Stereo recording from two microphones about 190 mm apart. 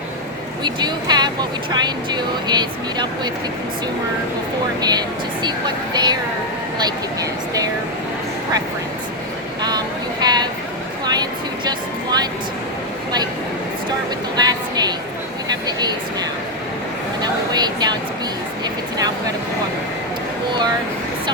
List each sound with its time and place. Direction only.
0.6 s speech: 25° right (ahead or behind)
4.8 s speech: 20° right (ahead or behind)
9.6 s vehicle: 20° right (ahead or behind)
11.0 s a sound: 20° right (ahead or behind)
14.3 s a sound: 20° right (ahead or behind)
15.6 s speech: 20° right (ahead or behind)
17.2 s speech: 20° right (ahead or behind)